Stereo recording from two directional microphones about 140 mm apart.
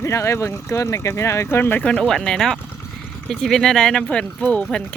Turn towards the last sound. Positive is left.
turn(degrees=5)  # may be behind; listen again after turning